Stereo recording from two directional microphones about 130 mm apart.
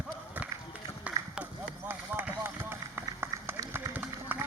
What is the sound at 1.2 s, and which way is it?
Run, 25° right (ahead or behind).